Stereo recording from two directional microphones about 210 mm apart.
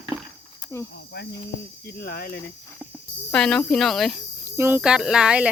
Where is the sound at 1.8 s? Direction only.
45° left (ahead or behind).